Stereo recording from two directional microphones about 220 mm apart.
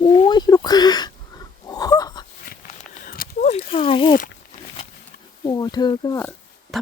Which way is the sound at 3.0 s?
40° left (ahead or behind).